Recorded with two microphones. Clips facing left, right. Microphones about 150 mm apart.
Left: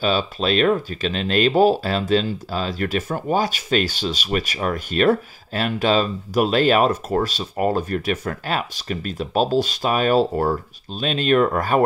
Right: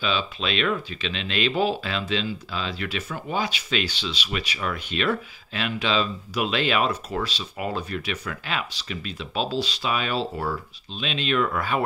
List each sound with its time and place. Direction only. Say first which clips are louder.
0.0 s speech: left 6 dB; 40° left (ahead or behind)